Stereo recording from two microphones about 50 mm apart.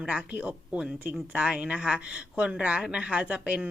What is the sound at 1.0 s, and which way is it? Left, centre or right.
Speech, right.